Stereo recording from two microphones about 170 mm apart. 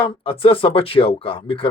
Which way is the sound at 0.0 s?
35° left (ahead or behind).